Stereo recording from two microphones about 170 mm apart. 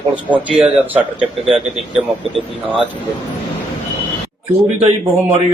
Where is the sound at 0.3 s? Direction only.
10° right (ahead or behind).